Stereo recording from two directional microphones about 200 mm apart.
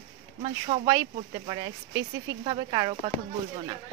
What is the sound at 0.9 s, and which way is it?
Speech, 20° right (ahead or behind).